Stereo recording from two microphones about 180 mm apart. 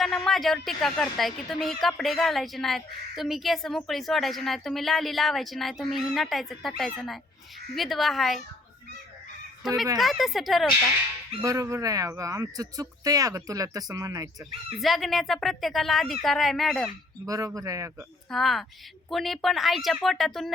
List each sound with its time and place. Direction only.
0.3 s a woman's voice: centre (ahead or behind)
9.6 s a woman's voice: centre (ahead or behind)
11.4 s speech: 20° right (ahead or behind)
14.8 s a woman's voice: centre (ahead or behind)
17.2 s speech: 20° right (ahead or behind)
18.3 s a woman's voice: centre (ahead or behind)